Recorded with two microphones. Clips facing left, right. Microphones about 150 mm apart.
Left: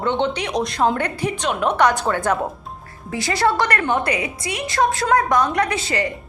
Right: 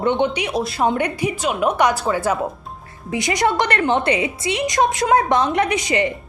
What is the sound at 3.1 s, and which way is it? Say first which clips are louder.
A woman's voice: right 1 dB; 20° right (ahead or behind).